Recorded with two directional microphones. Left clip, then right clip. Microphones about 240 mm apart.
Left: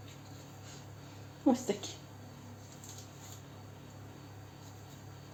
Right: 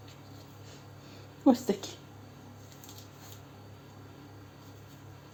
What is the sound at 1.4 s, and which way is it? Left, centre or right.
Speech, right.